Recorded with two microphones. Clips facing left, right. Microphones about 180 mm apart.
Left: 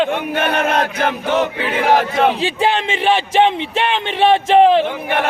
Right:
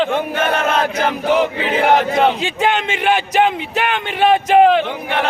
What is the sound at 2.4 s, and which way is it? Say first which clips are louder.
Speech: left 1 dB; 30° left (ahead or behind).